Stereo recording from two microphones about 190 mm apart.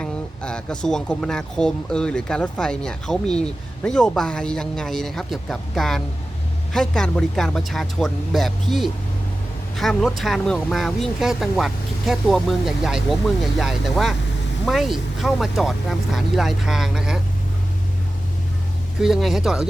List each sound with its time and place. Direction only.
0.0 s speech: 5° left (ahead or behind)
19.0 s speech: centre (ahead or behind)